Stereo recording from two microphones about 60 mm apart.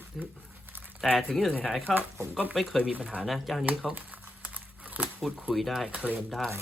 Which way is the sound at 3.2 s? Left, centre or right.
Centre.